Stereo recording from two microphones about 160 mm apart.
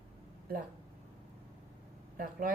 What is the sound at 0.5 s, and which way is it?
Speech, 70° right (ahead or behind).